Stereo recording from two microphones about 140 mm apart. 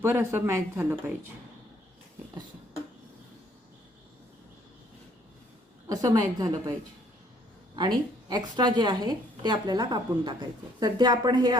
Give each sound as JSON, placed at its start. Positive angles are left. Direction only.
{"t": 0.0, "sound": "speech", "side_deg": -20}
{"t": 5.9, "sound": "a woman's voice", "side_deg": -25}
{"t": 7.8, "sound": "a woman's voice", "side_deg": -30}